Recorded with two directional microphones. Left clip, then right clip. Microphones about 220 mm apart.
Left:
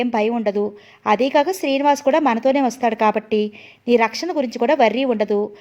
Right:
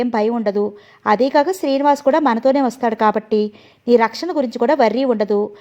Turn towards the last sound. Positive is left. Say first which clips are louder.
# right 2 dB
turn(degrees=-20)  # may be behind; listen again after turning